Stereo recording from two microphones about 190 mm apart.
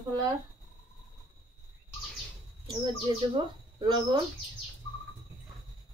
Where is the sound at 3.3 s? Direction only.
25° right (ahead or behind).